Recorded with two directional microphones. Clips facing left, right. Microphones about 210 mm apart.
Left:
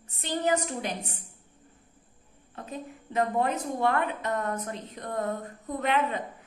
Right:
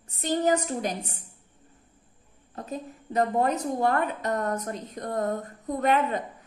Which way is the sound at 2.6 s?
40° right (ahead or behind).